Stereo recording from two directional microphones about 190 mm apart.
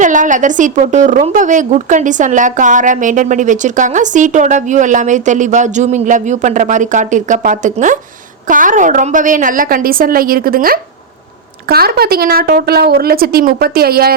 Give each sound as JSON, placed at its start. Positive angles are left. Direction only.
{"t": 0.0, "sound": "a woman's voice", "side_deg": -40}